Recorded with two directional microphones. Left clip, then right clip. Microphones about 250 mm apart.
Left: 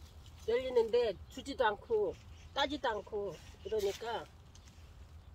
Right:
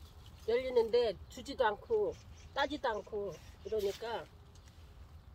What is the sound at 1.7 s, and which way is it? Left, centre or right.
Speech, centre.